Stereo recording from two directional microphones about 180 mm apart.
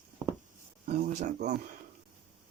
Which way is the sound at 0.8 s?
45° right (ahead or behind).